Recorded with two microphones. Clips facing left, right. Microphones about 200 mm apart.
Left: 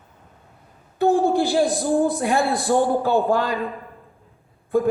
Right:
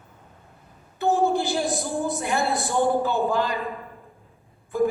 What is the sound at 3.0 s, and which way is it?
Speech, 55° left (ahead or behind).